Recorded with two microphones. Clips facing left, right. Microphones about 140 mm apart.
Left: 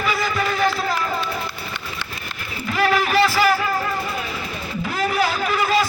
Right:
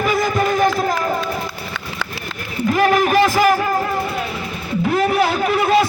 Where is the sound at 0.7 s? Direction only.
45° right (ahead or behind).